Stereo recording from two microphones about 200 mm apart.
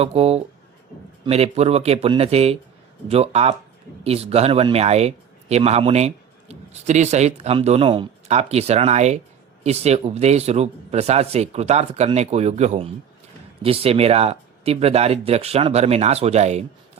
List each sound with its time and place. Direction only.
0.0 s speech: 30° right (ahead or behind)